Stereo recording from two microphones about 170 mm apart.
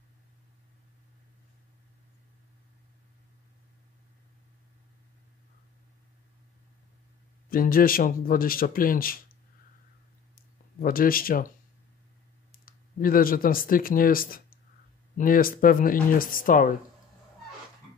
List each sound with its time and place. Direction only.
7.4 s a man's voice: 60° left (ahead or behind)
10.3 s a sound: 60° left (ahead or behind)
12.6 s a man's voice: 55° left (ahead or behind)